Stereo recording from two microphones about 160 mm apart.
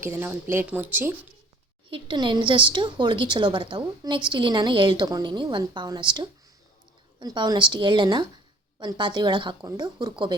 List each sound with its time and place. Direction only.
0.0 s speech: 15° right (ahead or behind)
1.9 s a woman's voice: 30° right (ahead or behind)